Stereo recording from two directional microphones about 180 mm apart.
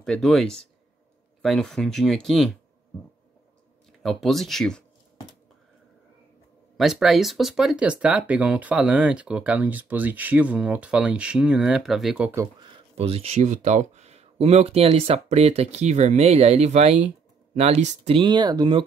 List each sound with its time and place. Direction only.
0.0 s speech: centre (ahead or behind)
4.0 s speech: centre (ahead or behind)
6.8 s speech: centre (ahead or behind)
12.9 s speech: 35° right (ahead or behind)